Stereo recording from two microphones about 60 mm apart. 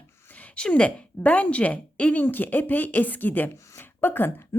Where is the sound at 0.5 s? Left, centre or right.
Centre.